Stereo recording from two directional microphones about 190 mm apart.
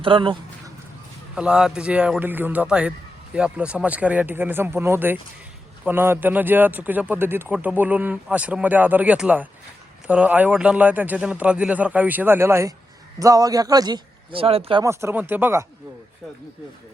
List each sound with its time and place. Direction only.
0.0 s a man's voice: 25° right (ahead or behind)
1.4 s a man's voice: 5° right (ahead or behind); by 14.8 s 30° right (ahead or behind)
14.8 s speech: 10° right (ahead or behind)